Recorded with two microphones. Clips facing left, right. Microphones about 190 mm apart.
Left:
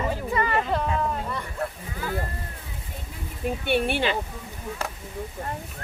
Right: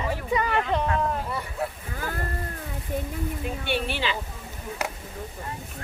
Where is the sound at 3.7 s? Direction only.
50° left (ahead or behind).